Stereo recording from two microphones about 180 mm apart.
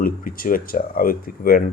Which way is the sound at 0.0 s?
50° left (ahead or behind).